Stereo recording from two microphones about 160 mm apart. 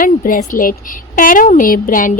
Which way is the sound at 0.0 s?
65° left (ahead or behind).